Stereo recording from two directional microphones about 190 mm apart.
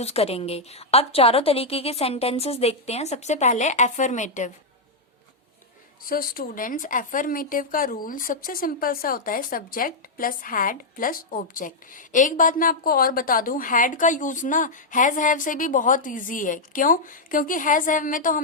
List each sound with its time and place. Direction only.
0.0 s a woman's voice: 35° left (ahead or behind)
6.1 s speech: 50° left (ahead or behind)